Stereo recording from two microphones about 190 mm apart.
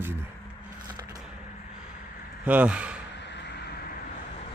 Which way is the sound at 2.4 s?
5° right (ahead or behind).